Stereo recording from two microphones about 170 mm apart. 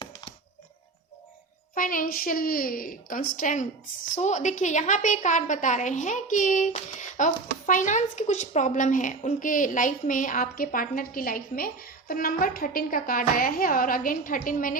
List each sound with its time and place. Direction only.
0.0 s music: 25° left (ahead or behind)
1.7 s a woman's voice: 55° left (ahead or behind)